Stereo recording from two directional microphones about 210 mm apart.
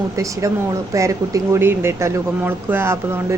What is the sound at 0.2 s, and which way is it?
Speech, 15° right (ahead or behind).